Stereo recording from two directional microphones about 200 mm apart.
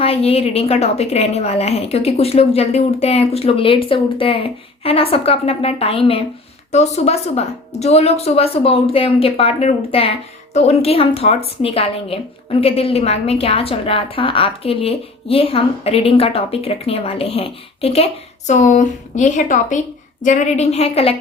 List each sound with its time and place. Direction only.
0.0 s a woman's voice: 30° left (ahead or behind)